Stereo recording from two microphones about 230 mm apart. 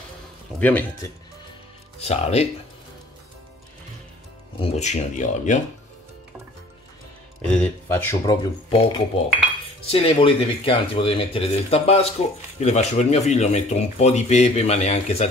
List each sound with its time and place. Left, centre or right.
0.6 s speech: centre
2.0 s speech: left
4.6 s speech: left
7.5 s speech: centre
8.6 s speech: left